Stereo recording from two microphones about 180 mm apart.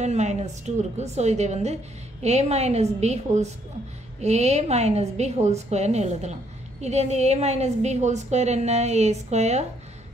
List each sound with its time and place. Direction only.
0.0 s a woman's voice: 40° right (ahead or behind)